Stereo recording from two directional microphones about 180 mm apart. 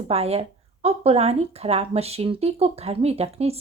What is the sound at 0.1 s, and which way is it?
Speech, 35° right (ahead or behind).